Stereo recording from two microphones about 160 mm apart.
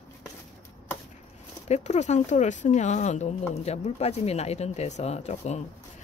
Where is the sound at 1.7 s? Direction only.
45° left (ahead or behind).